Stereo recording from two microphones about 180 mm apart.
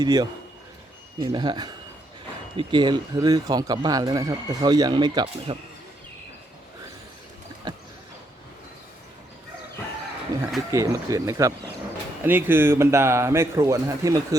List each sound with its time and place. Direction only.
0.0 s speech: 20° right (ahead or behind)
7.7 s a sound: 25° right (ahead or behind)
10.7 s speech: 15° right (ahead or behind)